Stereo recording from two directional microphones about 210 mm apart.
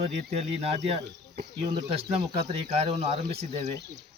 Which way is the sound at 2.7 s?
30° right (ahead or behind).